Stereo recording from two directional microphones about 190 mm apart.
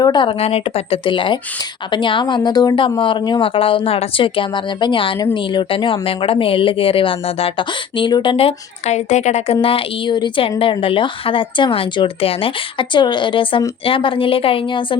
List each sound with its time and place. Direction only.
0.0 s a woman's voice: 25° left (ahead or behind)